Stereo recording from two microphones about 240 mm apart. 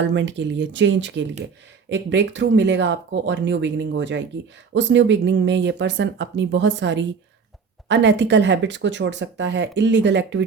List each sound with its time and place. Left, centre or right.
0.0 s speech: right